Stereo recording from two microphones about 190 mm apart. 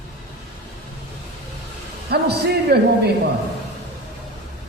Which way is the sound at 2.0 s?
60° right (ahead or behind).